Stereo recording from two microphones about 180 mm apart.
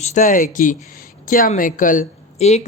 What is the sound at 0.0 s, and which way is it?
A woman's voice, 45° left (ahead or behind).